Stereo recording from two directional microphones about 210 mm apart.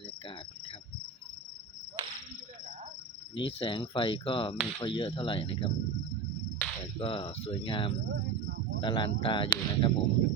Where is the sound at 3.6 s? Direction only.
25° left (ahead or behind).